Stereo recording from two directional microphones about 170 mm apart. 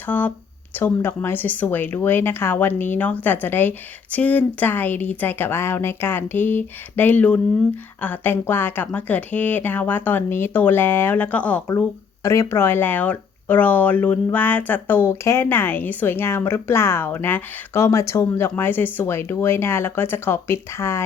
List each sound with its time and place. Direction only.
0.0 s speech: 10° left (ahead or behind)